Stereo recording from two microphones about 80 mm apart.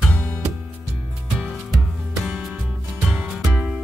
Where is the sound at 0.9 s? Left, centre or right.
Centre.